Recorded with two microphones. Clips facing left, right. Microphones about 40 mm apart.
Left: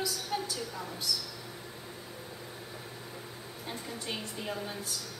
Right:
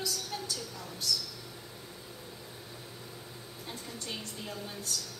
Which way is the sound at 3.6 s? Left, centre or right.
Centre.